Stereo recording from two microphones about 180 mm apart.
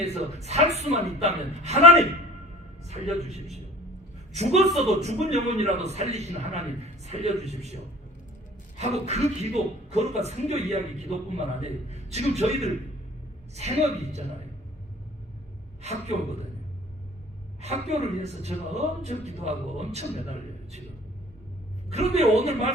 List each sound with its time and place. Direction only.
0.0 s speech: 35° right (ahead or behind)
4.4 s speech: 35° right (ahead or behind)
9.0 s speech: 40° right (ahead or behind)
15.8 s speech: 35° right (ahead or behind)
17.6 s speech: 35° right (ahead or behind)
21.8 s speech: 35° right (ahead or behind)